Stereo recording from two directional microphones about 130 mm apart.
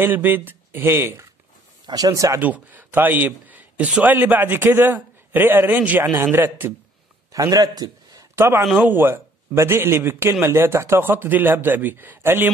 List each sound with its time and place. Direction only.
0.0 s speech: 15° right (ahead or behind)
1.9 s speech: 30° right (ahead or behind)
2.4 s speech: 15° right (ahead or behind)
7.3 s a man's voice: 30° right (ahead or behind)
8.4 s speech: 20° right (ahead or behind)